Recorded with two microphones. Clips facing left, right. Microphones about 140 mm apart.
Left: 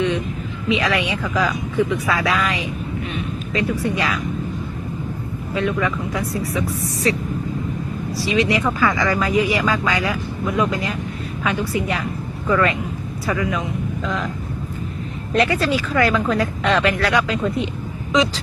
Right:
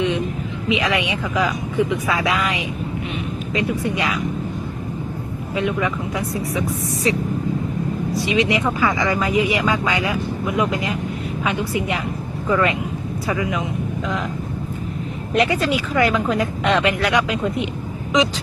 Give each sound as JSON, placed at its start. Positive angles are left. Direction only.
{"t": 0.7, "sound": "speech", "side_deg": -20}
{"t": 5.5, "sound": "speech", "side_deg": -20}
{"t": 15.4, "sound": "speech", "side_deg": -20}